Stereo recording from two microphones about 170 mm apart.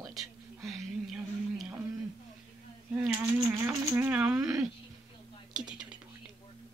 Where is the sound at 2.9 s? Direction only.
15° right (ahead or behind).